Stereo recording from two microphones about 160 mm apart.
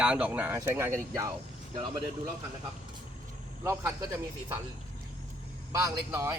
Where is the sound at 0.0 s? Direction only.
10° right (ahead or behind).